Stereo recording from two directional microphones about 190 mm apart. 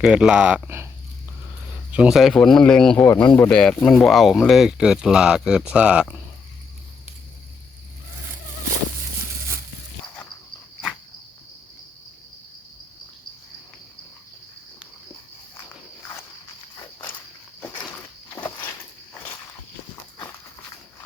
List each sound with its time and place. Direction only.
0.0 s speech: 5° right (ahead or behind)
1.9 s speech: 5° right (ahead or behind)
16.7 s walk: 10° left (ahead or behind)
17.6 s a sound: 25° left (ahead or behind)
18.5 s walk: 20° left (ahead or behind)